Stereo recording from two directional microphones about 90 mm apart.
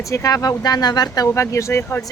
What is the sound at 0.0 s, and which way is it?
Speech, 35° left (ahead or behind).